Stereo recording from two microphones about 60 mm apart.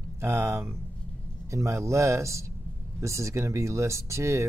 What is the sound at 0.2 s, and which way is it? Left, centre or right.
Speech, right.